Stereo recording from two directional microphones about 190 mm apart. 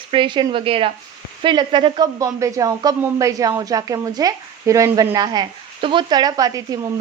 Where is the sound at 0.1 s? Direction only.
25° right (ahead or behind).